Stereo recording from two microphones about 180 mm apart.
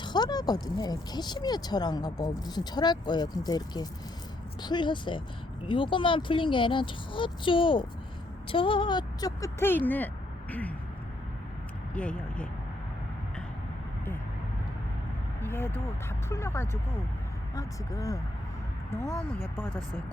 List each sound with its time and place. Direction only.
0.0 s speech: 25° left (ahead or behind)
11.9 s speech: 5° left (ahead or behind)
15.4 s speech: 10° left (ahead or behind)